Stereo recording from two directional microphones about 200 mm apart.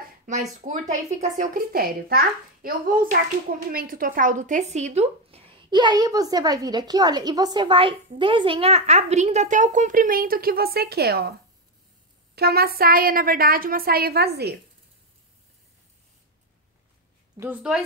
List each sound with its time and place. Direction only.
0.3 s a woman's voice: 40° right (ahead or behind)
12.4 s a woman's voice: 50° right (ahead or behind)
17.4 s a woman's voice: 5° right (ahead or behind)